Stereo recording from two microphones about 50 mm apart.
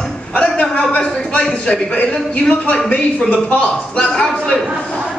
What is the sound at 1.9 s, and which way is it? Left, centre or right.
A man's voice, left.